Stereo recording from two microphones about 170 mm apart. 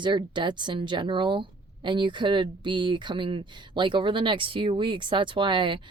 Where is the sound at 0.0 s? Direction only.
30° right (ahead or behind).